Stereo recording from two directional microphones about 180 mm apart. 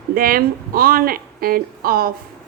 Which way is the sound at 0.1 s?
55° right (ahead or behind).